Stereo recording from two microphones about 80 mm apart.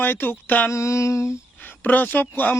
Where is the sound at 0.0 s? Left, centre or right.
Left.